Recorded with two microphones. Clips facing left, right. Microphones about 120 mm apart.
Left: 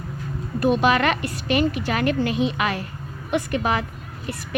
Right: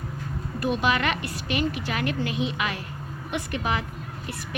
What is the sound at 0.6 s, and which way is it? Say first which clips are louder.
A woman's voice: left 6 dB; 45° left (ahead or behind).